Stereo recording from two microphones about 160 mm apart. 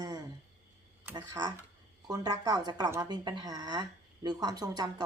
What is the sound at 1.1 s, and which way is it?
A woman's voice, 25° right (ahead or behind).